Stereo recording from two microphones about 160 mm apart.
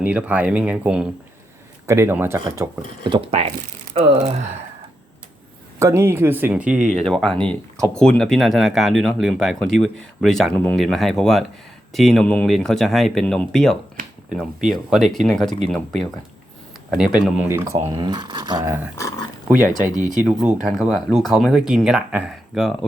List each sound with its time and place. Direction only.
0.0 s speech: 10° right (ahead or behind)
3.0 s speech: 35° right (ahead or behind)
5.8 s speech: 15° right (ahead or behind); by 15.5 s centre (ahead or behind)
17.0 s speech: 5° right (ahead or behind); by 18.7 s 25° right (ahead or behind)
18.9 s a sound: 20° left (ahead or behind)
19.7 s speech: 25° left (ahead or behind)
20.2 s speech: 5° right (ahead or behind)